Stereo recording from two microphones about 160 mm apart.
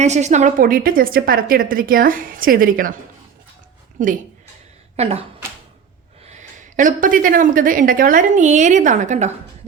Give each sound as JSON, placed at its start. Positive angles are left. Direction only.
{"t": 0.0, "sound": "speech", "side_deg": -45}
{"t": 4.9, "sound": "speech", "side_deg": -40}
{"t": 6.2, "sound": "speech", "side_deg": -50}